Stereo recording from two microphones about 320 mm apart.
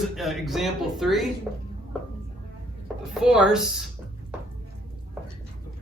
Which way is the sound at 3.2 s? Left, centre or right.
Centre.